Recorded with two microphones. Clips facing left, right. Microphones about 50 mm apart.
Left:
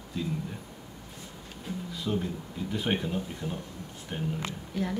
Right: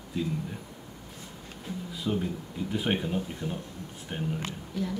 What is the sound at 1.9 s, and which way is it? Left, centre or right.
Speech, centre.